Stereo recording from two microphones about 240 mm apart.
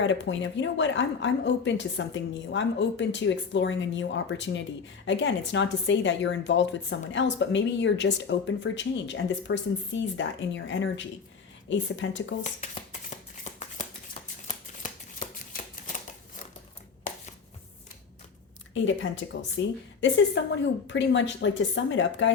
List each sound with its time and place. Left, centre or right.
0.0 s a woman's voice: left
12.4 s shuffling cards: left
18.7 s a woman's voice: left